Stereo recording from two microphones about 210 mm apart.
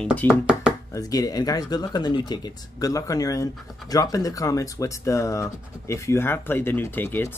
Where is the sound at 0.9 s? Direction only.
15° left (ahead or behind).